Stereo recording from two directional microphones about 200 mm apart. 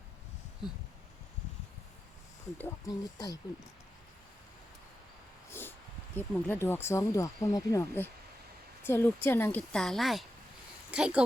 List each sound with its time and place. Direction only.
2.6 s speech: 15° left (ahead or behind)
5.5 s dog: 10° left (ahead or behind)
6.1 s speech: 10° left (ahead or behind); by 11.2 s 5° right (ahead or behind)